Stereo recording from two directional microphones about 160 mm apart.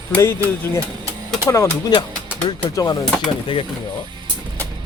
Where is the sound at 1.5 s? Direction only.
20° left (ahead or behind).